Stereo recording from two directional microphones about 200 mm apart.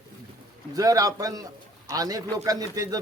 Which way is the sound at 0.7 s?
15° right (ahead or behind).